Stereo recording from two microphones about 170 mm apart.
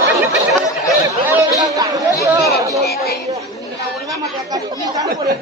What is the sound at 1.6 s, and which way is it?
Chatter, 20° right (ahead or behind).